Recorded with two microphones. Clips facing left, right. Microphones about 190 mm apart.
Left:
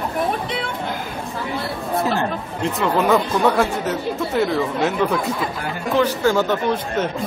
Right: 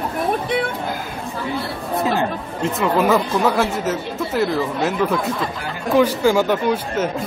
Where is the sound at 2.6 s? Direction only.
Centre (ahead or behind).